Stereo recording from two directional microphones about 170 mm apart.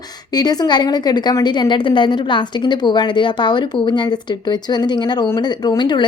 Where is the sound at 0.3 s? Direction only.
25° left (ahead or behind).